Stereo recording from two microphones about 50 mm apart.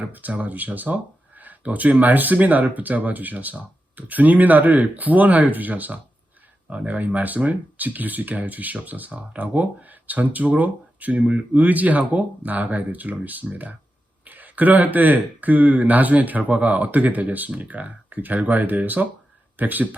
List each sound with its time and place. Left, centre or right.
0.0 s speech: right